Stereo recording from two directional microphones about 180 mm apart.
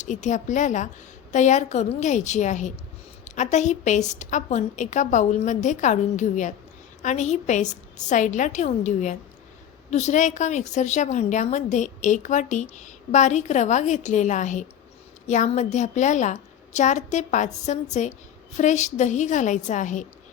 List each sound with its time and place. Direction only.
0.0 s a woman's voice: 40° left (ahead or behind)